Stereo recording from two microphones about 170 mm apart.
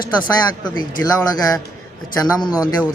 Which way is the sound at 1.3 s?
25° left (ahead or behind).